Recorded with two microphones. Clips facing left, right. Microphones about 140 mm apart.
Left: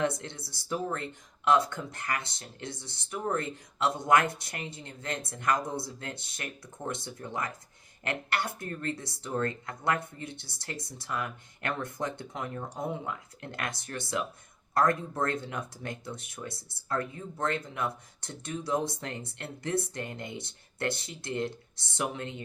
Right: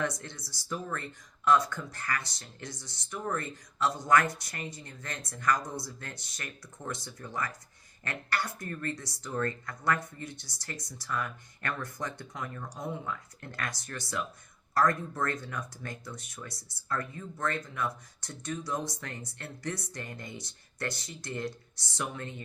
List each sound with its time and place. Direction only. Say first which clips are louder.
0.0 s speech: left 3 dB; 25° left (ahead or behind)